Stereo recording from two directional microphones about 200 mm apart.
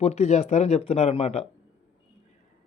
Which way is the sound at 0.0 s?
35° left (ahead or behind).